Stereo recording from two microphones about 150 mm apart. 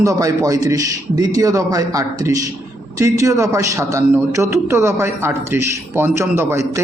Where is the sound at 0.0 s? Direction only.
20° right (ahead or behind).